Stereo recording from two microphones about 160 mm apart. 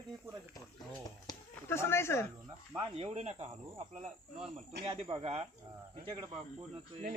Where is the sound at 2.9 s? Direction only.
40° right (ahead or behind).